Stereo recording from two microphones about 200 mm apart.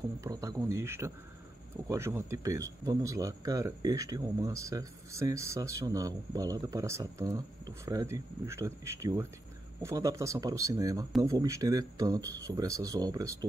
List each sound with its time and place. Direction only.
0.2 s speech: 15° right (ahead or behind)